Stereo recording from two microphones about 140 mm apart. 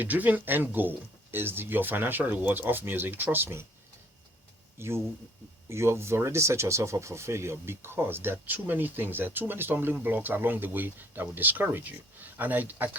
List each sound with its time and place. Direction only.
0.0 s speech: 10° right (ahead or behind)
4.8 s speech: 20° right (ahead or behind)